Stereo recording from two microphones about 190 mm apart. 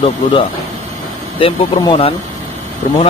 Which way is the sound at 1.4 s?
25° left (ahead or behind).